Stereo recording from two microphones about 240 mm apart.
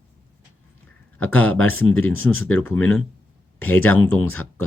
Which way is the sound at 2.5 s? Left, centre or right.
Centre.